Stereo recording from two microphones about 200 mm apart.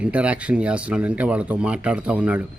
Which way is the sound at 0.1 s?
5° right (ahead or behind).